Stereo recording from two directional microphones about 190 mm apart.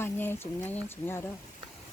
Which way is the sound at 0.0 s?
10° left (ahead or behind).